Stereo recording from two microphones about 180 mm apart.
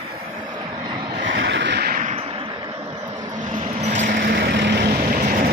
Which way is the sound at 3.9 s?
45° right (ahead or behind).